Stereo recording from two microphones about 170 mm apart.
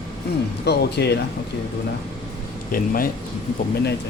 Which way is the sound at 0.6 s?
75° left (ahead or behind).